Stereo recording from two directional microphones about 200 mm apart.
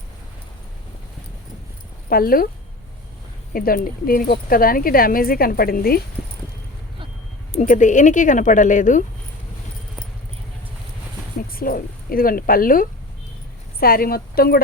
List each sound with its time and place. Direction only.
2.0 s speech: 50° left (ahead or behind)
3.5 s speech: 45° left (ahead or behind)
7.5 s speech: 40° left (ahead or behind)
11.5 s speech: 45° left (ahead or behind)